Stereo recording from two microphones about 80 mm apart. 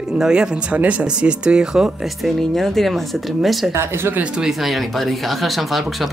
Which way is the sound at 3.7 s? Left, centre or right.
Right.